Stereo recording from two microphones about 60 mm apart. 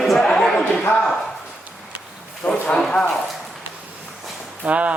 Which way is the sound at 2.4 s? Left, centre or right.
Left.